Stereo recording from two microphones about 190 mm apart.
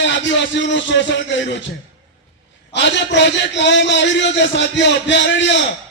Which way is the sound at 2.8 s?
65° left (ahead or behind).